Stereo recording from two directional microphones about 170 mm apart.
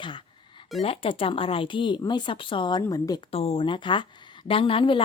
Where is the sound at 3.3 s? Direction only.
35° left (ahead or behind).